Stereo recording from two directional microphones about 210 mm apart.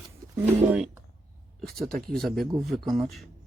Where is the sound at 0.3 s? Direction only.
5° right (ahead or behind).